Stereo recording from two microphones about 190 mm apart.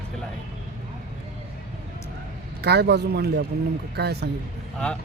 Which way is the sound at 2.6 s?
60° right (ahead or behind).